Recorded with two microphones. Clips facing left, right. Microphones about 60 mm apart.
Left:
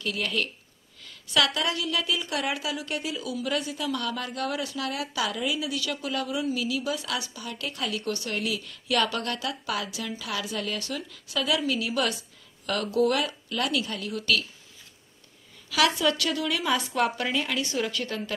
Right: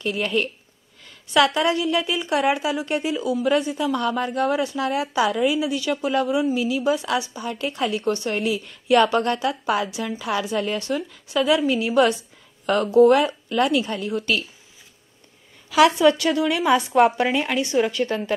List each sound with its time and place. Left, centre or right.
0.0 s a woman's voice: right
15.7 s a woman's voice: right